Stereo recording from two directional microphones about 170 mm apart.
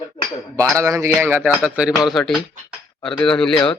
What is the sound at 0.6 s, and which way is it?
Speech, 15° right (ahead or behind).